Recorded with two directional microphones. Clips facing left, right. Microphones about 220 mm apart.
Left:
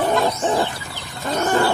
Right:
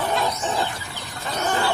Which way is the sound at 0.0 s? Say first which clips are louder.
Left 5 dB; 50° left (ahead or behind).